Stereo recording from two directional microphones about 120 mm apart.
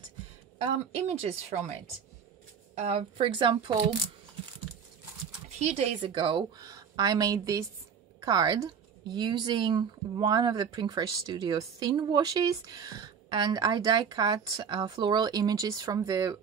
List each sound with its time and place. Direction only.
1.0 s a woman's voice: 65° right (ahead or behind)
3.0 s a woman's voice: 45° right (ahead or behind)
5.6 s speech: 65° right (ahead or behind)
6.1 s speech: 45° right (ahead or behind)
6.6 s a woman's voice: 30° right (ahead or behind)